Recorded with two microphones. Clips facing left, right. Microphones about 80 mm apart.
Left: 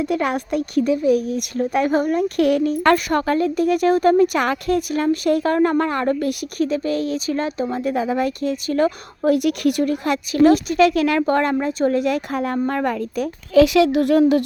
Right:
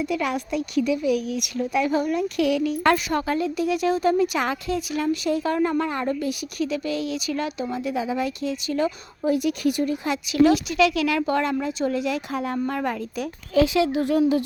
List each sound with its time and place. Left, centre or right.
0.0 s speech: left
7.8 s speech: left
10.3 s speech: left
13.5 s speech: left